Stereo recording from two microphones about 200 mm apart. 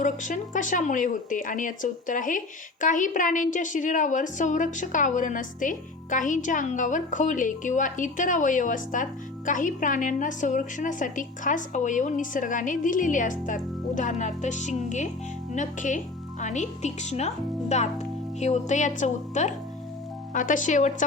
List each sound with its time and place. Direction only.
0.0 s a woman's voice: 40° left (ahead or behind)